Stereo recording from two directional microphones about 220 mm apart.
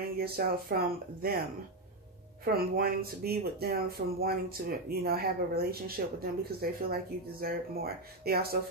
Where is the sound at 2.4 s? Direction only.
40° right (ahead or behind).